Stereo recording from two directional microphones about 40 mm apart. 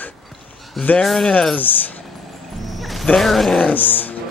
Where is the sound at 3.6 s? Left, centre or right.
Left.